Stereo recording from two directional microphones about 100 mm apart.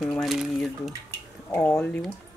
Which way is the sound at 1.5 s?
25° left (ahead or behind).